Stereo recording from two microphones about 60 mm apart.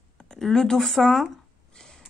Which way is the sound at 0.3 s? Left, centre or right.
Centre.